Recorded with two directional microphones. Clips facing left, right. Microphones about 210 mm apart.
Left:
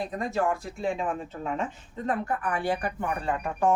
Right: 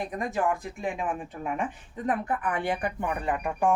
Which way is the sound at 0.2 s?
15° right (ahead or behind).